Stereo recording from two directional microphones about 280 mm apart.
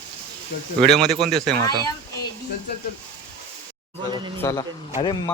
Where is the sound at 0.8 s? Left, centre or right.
Centre.